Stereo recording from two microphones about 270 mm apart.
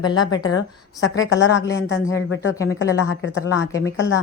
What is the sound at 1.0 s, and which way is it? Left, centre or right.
Speech, left.